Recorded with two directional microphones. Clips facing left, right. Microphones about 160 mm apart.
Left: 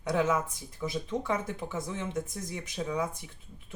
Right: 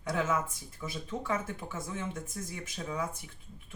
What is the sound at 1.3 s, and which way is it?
Speech, 20° left (ahead or behind).